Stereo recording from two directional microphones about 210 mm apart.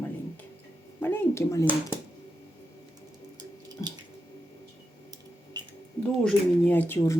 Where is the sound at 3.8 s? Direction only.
20° left (ahead or behind).